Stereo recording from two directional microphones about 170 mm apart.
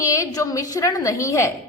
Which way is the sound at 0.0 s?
20° left (ahead or behind).